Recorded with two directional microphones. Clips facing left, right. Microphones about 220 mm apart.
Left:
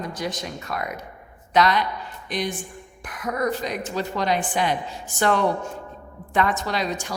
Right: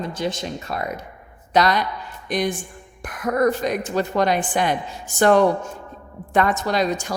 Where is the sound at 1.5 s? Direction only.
40° right (ahead or behind).